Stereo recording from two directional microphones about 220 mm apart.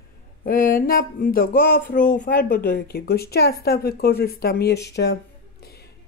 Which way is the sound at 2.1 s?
40° left (ahead or behind).